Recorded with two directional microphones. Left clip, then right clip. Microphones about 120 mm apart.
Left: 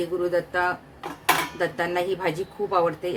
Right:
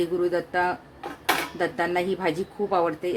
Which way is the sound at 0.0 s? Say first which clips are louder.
Even; 40° right (ahead or behind).